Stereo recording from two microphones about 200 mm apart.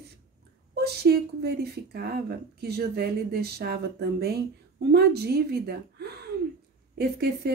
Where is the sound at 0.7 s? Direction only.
55° right (ahead or behind).